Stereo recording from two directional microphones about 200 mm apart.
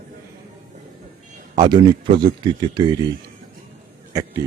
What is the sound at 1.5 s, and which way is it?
A man's voice, 20° right (ahead or behind).